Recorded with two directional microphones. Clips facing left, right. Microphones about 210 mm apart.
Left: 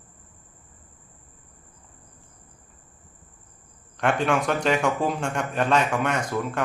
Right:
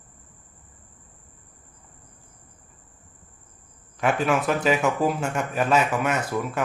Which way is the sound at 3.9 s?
5° right (ahead or behind).